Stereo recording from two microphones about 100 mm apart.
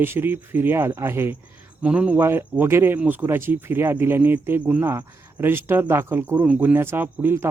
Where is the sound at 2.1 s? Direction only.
25° right (ahead or behind).